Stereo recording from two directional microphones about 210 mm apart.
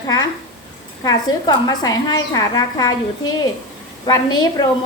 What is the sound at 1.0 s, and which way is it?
A woman's voice, 20° left (ahead or behind).